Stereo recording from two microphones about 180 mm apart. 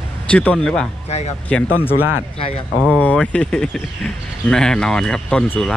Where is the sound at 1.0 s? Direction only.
35° left (ahead or behind).